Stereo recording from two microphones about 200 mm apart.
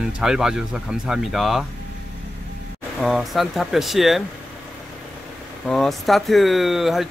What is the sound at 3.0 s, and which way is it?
Speech, centre (ahead or behind).